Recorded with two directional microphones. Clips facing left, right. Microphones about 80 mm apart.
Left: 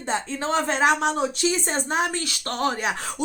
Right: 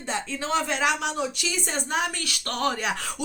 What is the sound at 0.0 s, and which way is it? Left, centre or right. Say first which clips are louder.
A woman's voice: left 4 dB; left.